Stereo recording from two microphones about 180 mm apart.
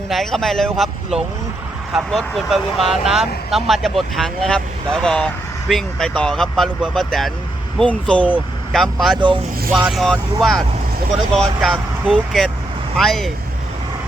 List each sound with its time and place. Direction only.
0.1 s speech: centre (ahead or behind)
9.2 s speech: 25° right (ahead or behind)
9.8 s speech: centre (ahead or behind)